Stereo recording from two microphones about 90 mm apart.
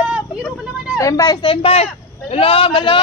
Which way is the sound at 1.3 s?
80° left.